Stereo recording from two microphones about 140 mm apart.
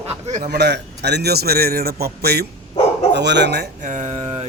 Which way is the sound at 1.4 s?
90° right.